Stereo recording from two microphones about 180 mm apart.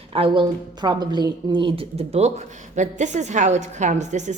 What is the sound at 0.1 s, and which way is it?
A woman's voice, 30° right (ahead or behind).